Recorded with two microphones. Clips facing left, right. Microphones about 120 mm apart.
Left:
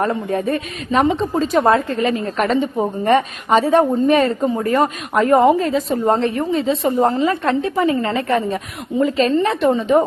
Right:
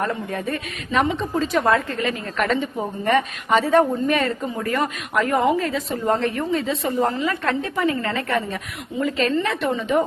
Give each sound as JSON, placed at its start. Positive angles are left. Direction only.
{"t": 0.0, "sound": "a woman's voice", "side_deg": 30}